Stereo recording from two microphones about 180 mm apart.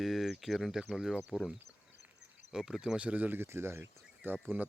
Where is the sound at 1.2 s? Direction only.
5° right (ahead or behind).